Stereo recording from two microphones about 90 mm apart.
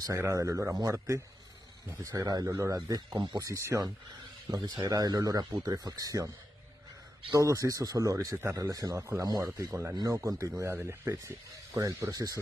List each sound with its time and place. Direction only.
0.2 s speech: 35° right (ahead or behind)
2.4 s speech: 35° right (ahead or behind)
3.4 s speech: 35° right (ahead or behind)
4.5 s speech: 50° right (ahead or behind)
7.3 s speech: 40° right (ahead or behind)
8.4 s speech: 30° right (ahead or behind)
8.6 s speech: 45° right (ahead or behind)